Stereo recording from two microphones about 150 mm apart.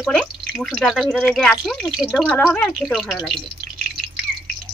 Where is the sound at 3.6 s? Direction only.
80° right.